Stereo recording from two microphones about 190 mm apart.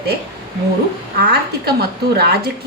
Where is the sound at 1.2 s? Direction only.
55° right (ahead or behind).